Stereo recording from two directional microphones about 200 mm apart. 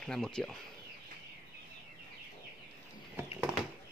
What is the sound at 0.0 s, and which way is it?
Speech, 5° left (ahead or behind).